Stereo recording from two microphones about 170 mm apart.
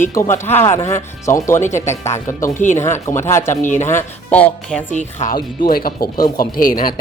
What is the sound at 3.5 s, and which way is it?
Speech, 45° left (ahead or behind).